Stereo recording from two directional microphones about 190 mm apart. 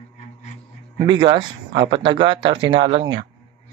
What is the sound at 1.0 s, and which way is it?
Speech, 25° right (ahead or behind).